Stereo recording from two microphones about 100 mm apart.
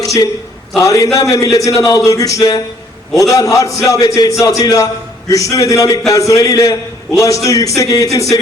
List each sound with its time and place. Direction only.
0.0 s a man's voice: 35° left (ahead or behind)